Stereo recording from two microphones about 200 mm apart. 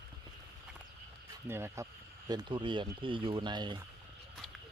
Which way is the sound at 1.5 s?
10° right (ahead or behind).